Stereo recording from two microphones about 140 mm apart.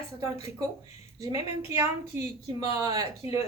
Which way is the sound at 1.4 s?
20° right (ahead or behind).